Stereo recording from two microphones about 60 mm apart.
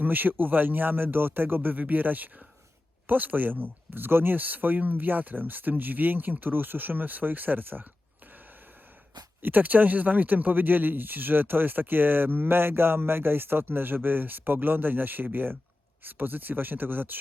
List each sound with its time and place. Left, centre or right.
0.0 s speech: right
9.4 s speech: right